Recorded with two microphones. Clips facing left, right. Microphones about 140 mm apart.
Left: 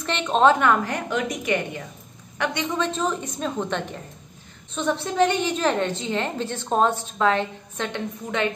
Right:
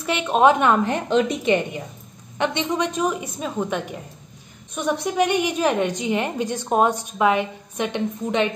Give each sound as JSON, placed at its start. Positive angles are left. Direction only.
{"t": 0.0, "sound": "a woman's voice", "side_deg": -10}